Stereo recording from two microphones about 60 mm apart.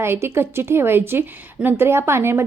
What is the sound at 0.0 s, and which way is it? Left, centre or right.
A woman's voice, right.